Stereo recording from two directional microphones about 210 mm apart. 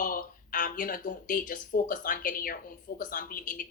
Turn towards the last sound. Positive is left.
turn(degrees=40)  # may be behind; listen again after turning